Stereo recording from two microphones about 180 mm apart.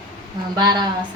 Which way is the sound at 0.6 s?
25° right (ahead or behind).